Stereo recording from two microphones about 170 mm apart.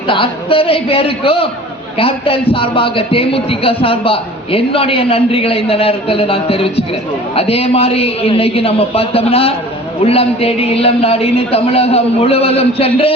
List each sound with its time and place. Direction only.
0.1 s a man's voice: 30° left (ahead or behind)